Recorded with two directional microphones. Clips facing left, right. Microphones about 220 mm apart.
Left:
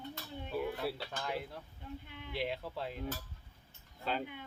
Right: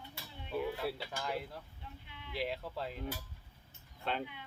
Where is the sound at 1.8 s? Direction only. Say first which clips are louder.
Left 7 dB; 45° left (ahead or behind).